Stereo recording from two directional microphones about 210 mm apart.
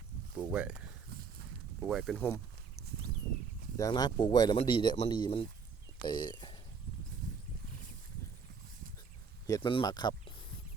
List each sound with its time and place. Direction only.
0.3 s speech: 5° right (ahead or behind)
1.1 s a sound: 45° right (ahead or behind)
1.8 s speech: centre (ahead or behind)
3.8 s speech: 20° left (ahead or behind)
9.5 s speech: 25° left (ahead or behind)